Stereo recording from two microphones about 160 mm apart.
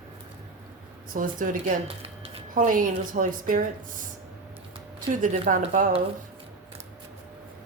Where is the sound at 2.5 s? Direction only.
55° right (ahead or behind).